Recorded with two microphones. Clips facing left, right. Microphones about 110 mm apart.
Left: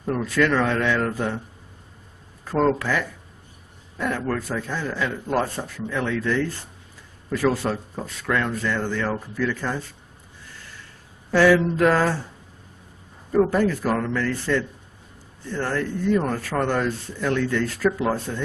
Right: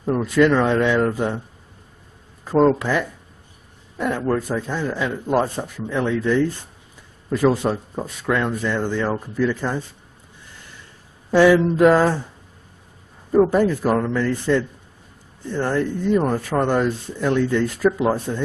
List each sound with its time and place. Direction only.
0.0 s speech: 15° right (ahead or behind)
2.4 s speech: 15° right (ahead or behind)
11.2 s speech: 20° right (ahead or behind)
13.3 s speech: 20° right (ahead or behind)